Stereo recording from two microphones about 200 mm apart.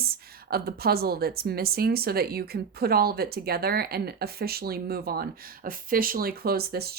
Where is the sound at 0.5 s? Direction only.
50° right (ahead or behind).